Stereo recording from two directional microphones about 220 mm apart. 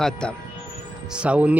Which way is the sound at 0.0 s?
5° left (ahead or behind).